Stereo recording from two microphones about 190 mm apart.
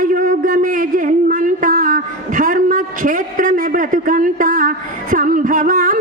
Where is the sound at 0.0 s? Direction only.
45° right (ahead or behind).